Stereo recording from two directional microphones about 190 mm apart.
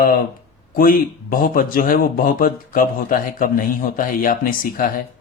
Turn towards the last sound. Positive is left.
turn(degrees=50)  # may be behind; listen again after turning